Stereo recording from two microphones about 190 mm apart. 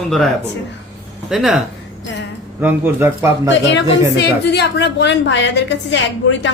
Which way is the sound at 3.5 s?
65° left (ahead or behind).